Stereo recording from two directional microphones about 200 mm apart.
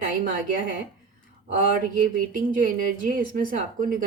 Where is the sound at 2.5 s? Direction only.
40° right (ahead or behind).